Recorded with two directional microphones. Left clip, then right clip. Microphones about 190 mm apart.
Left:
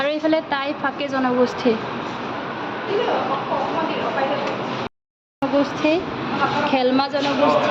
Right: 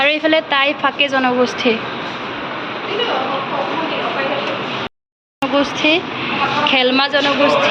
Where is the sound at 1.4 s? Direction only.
15° left (ahead or behind).